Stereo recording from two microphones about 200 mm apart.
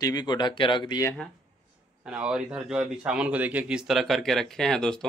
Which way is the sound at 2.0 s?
5° right (ahead or behind).